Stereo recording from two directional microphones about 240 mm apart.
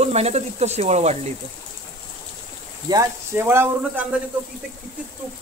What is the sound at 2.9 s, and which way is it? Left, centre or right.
Speech, centre.